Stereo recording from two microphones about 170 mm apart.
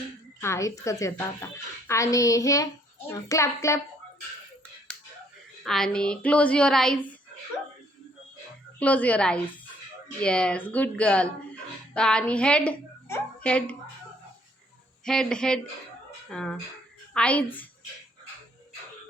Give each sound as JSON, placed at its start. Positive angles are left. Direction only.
{"t": 0.4, "sound": "speech", "side_deg": 15}
{"t": 5.6, "sound": "a woman's voice", "side_deg": 5}
{"t": 8.8, "sound": "a woman's voice", "side_deg": 10}
{"t": 15.0, "sound": "a woman's voice", "side_deg": 5}